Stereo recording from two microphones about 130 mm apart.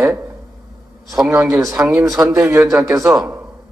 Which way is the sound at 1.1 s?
5° right (ahead or behind).